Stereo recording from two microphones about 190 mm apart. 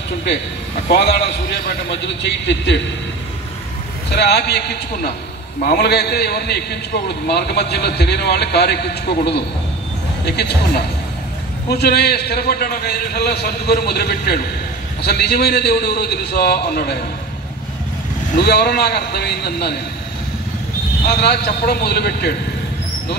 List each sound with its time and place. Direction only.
0.8 s a man's voice: 60° left (ahead or behind)
4.1 s a man's voice: 60° left (ahead or behind)
18.4 s a man's voice: 60° left (ahead or behind)
21.2 s a man's voice: 60° left (ahead or behind)